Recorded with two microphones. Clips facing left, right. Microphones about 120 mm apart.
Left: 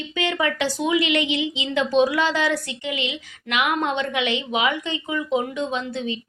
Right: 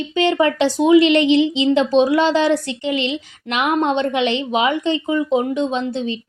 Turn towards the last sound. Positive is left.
turn(degrees=-30)  # may be behind; listen again after turning